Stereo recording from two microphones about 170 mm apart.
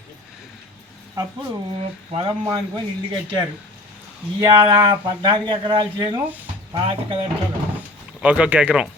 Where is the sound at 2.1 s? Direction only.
25° right (ahead or behind).